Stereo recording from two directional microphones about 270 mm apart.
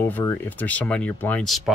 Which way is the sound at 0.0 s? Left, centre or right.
Centre.